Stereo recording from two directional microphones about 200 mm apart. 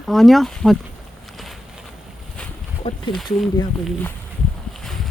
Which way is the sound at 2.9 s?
25° left (ahead or behind).